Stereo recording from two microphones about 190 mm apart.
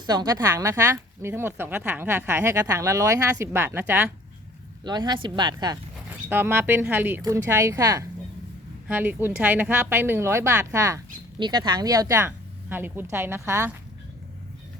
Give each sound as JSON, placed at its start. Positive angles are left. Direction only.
{"t": 0.0, "sound": "a woman's voice", "side_deg": -20}
{"t": 4.8, "sound": "speech", "side_deg": -20}
{"t": 6.2, "sound": "a woman's voice", "side_deg": -10}